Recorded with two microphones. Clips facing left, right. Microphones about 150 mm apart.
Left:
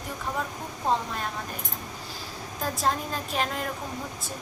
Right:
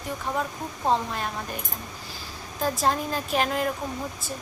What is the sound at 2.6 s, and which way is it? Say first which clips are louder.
A woman's voice: right 3 dB; centre (ahead or behind).